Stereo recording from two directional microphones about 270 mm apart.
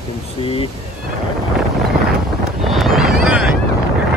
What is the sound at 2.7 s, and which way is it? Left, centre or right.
Vehicle, centre.